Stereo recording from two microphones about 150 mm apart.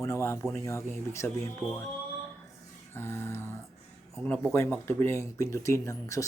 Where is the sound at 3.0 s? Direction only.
15° left (ahead or behind).